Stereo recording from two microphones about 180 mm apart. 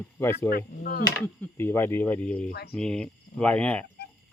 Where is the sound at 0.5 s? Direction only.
55° left (ahead or behind).